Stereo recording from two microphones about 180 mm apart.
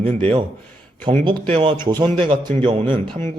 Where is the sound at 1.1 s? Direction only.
30° right (ahead or behind).